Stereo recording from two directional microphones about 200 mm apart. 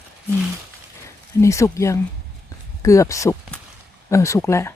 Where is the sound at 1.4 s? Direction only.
15° left (ahead or behind).